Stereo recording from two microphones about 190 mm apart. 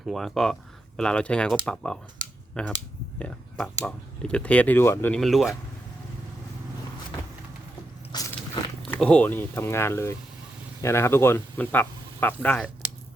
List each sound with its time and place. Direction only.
0.0 s speech: centre (ahead or behind)
8.1 s biting: 20° left (ahead or behind)
8.8 s speech: 5° left (ahead or behind)